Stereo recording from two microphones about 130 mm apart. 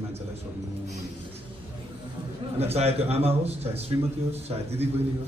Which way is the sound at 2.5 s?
50° right (ahead or behind).